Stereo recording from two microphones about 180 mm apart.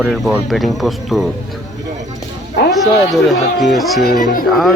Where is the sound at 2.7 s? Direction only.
Centre (ahead or behind).